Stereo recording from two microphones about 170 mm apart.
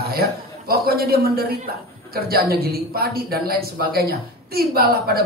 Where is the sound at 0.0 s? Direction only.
65° right (ahead or behind).